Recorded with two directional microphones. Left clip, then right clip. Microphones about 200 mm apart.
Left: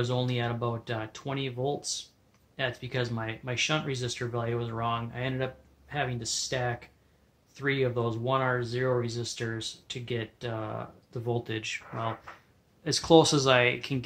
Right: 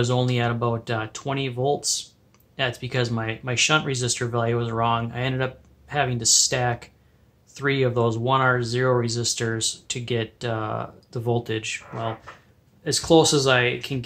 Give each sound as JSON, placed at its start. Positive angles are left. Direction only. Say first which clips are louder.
{"t": 0.0, "sound": "speech", "louder": "right 7 dB", "side_deg": 5}